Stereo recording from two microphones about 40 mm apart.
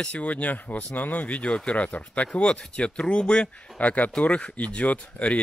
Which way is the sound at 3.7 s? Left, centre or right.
Left.